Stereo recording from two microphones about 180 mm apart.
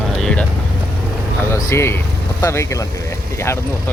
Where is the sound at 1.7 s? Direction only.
15° left (ahead or behind).